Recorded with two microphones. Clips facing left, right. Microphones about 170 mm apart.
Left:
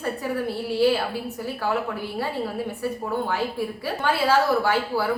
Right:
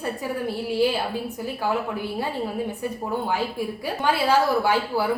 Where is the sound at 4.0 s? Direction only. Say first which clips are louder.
Even; 15° right (ahead or behind).